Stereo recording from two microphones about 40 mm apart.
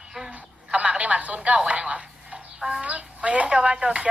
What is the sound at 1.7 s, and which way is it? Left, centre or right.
Telephone, right.